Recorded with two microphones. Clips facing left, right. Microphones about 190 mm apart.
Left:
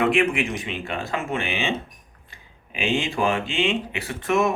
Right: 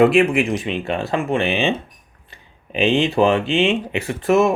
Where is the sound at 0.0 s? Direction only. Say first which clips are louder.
Right 7 dB; 30° right (ahead or behind).